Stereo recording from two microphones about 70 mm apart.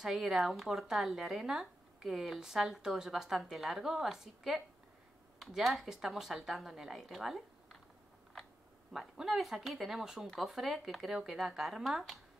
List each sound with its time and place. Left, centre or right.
0.0 s speech: centre
8.9 s speech: centre